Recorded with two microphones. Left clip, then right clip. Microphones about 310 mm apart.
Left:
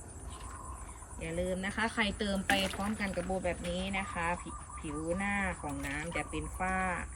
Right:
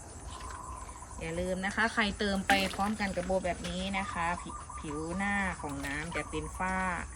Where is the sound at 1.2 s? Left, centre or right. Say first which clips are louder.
Right 1 dB; centre.